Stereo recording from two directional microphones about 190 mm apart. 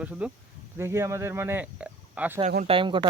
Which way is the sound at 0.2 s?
5° right (ahead or behind).